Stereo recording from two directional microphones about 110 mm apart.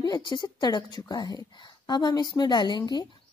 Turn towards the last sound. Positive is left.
turn(degrees=40)  # may be behind; listen again after turning